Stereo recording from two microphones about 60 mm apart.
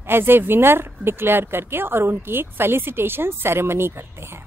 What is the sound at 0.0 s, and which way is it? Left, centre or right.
A woman's voice, right.